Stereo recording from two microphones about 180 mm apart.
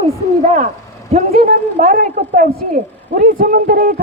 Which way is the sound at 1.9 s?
55° right (ahead or behind).